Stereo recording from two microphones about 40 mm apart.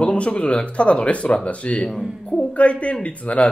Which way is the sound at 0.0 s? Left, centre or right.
Left.